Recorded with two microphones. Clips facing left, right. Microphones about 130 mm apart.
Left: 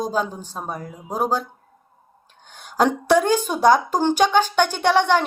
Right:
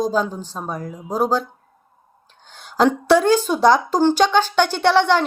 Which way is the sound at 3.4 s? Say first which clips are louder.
Right 1 dB; 50° left (ahead or behind).